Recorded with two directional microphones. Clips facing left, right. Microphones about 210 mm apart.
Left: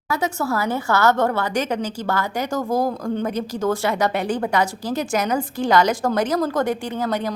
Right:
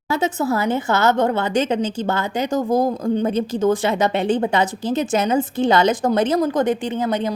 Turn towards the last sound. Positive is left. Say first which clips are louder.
# right 3 dB
turn(degrees=-20)  # may be behind; listen again after turning